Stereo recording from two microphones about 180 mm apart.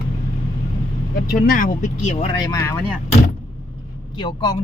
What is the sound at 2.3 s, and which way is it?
Speech, 25° left (ahead or behind).